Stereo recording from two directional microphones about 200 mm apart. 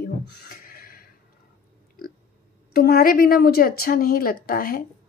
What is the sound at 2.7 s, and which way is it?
Speech, 50° left (ahead or behind).